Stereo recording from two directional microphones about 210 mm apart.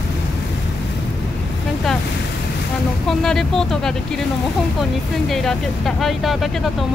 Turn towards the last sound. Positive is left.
turn(degrees=0)  # may be behind; listen again after turning